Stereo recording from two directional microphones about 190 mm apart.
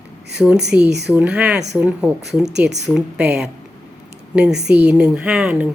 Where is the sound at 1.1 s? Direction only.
5° right (ahead or behind).